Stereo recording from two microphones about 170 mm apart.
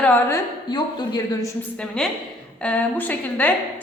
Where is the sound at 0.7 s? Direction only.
25° left (ahead or behind).